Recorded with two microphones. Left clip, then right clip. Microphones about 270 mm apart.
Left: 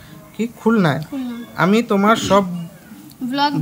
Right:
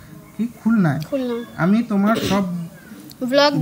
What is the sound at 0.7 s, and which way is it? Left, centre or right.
Speech, left.